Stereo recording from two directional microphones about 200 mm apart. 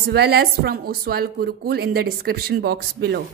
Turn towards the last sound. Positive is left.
turn(degrees=-55)  # may be behind; listen again after turning